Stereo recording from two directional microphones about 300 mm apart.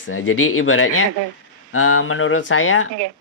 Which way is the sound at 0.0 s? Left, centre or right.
Left.